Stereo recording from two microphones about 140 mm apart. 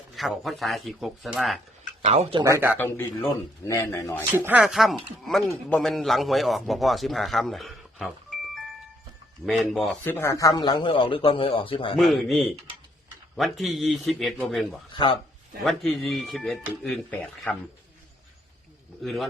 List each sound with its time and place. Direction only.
0.2 s a man's voice: centre (ahead or behind)
2.0 s speech: 45° right (ahead or behind)
2.4 s speech: 20° right (ahead or behind)
2.7 s a man's voice: 15° left (ahead or behind)
4.4 s speech: 15° right (ahead or behind)
4.6 s a man's voice: centre (ahead or behind)
9.5 s a man's voice: centre (ahead or behind)
10.0 s a man's voice: 15° left (ahead or behind); by 11.9 s 40° left (ahead or behind)
11.9 s a man's voice: centre (ahead or behind)
14.9 s a man's voice: 35° left (ahead or behind)
15.6 s a man's voice: centre (ahead or behind)
19.0 s a man's voice: centre (ahead or behind)